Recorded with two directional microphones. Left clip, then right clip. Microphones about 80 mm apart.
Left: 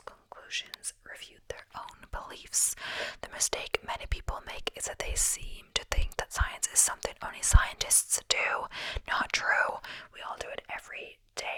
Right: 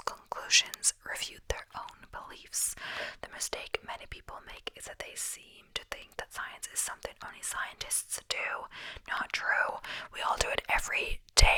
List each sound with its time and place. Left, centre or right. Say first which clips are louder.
0.0 s whispering: right 10 dB; right
0.8 s speech: right 9 dB; right
1.8 s speech: even; centre
2.1 s speech: left 5 dB; centre
10.2 s speech: right 9 dB; right